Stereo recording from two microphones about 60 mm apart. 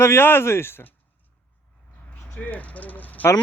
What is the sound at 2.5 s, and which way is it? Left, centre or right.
Bird, left.